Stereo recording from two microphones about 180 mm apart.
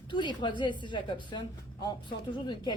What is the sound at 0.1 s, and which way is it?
A woman's voice, 25° left (ahead or behind).